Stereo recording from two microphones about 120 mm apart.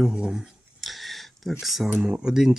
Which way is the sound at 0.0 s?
5° right (ahead or behind).